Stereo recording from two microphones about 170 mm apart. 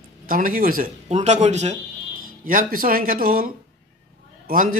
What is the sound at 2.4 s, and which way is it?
A man's voice, 55° right (ahead or behind).